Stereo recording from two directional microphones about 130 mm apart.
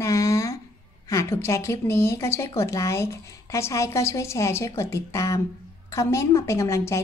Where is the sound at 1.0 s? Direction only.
25° left (ahead or behind).